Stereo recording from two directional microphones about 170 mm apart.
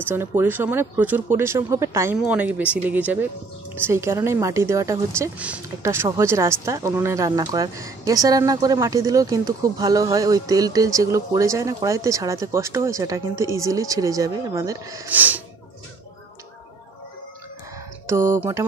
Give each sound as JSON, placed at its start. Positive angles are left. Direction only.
{"t": 0.0, "sound": "speech", "side_deg": -15}
{"t": 18.0, "sound": "speech", "side_deg": -15}